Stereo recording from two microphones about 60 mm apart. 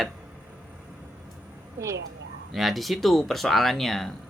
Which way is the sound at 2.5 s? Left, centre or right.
Centre.